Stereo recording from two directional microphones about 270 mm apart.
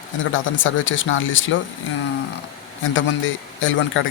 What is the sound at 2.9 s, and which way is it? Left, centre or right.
Speech, left.